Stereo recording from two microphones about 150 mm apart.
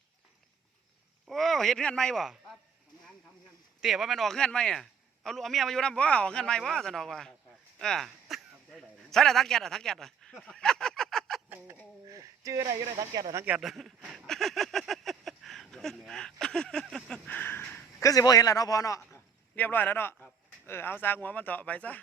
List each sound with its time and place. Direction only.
1.3 s speech: centre (ahead or behind)
3.8 s a man's voice: 5° right (ahead or behind)
7.8 s a sound: centre (ahead or behind)
11.4 s a sound: 15° right (ahead or behind)
12.0 s speech: 20° right (ahead or behind)
13.4 s speech: 5° right (ahead or behind); by 18.1 s 15° left (ahead or behind)
18.1 s a man's voice: 25° left (ahead or behind)